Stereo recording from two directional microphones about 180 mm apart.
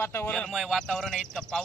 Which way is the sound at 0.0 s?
10° left (ahead or behind).